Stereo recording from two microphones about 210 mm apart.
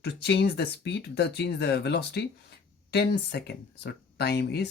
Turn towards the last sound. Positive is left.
turn(degrees=50)  # may be behind; listen again after turning